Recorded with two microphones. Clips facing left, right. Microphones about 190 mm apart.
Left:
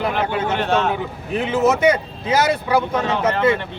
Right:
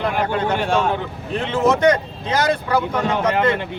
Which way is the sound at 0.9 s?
10° left (ahead or behind).